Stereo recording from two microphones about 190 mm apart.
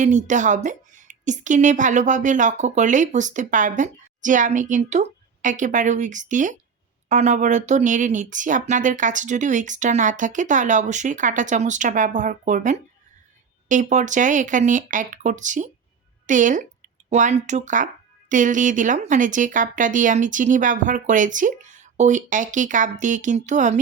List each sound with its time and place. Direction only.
0.0 s a woman's voice: 40° right (ahead or behind)